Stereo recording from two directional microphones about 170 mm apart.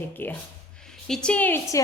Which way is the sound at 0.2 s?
10° left (ahead or behind).